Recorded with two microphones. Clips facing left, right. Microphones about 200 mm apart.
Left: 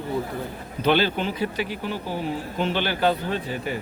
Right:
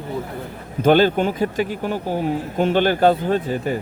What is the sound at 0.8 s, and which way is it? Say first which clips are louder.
Speech: right 7 dB; 45° right (ahead or behind).